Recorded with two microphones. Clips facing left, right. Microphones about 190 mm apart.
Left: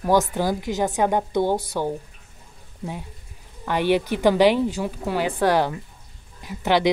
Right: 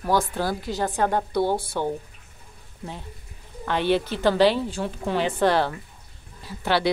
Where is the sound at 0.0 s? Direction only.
15° left (ahead or behind).